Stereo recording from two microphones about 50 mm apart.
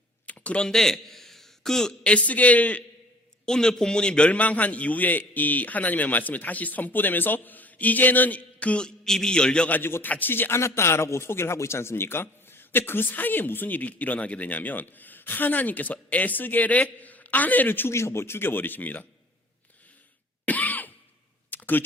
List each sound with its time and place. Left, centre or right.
0.3 s computer keyboard: left
0.7 s a man's voice: centre; by 2.8 s left
3.4 s a man's voice: centre
9.0 s a man's voice: centre
9.6 s a man's voice: left
10.6 s a man's voice: left
17.9 s speech: left
20.4 s cough: left
21.5 s a sound: left